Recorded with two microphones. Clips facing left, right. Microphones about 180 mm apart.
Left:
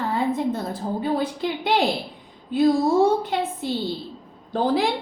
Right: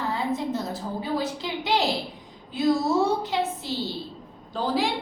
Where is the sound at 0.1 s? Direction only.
55° left (ahead or behind).